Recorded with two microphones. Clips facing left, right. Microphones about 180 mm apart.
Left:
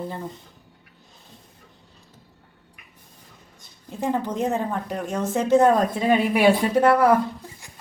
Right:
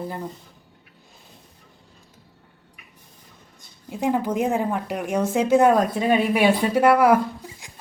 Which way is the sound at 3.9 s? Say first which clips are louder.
Right 2 dB; 10° right (ahead or behind).